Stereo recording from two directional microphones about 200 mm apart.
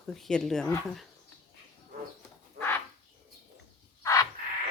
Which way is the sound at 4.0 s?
15° left (ahead or behind).